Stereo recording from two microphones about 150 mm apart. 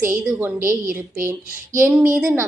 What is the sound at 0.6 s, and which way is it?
Speech, 65° right (ahead or behind).